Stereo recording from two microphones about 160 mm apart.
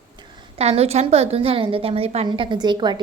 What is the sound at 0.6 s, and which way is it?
A woman's voice, 40° right (ahead or behind).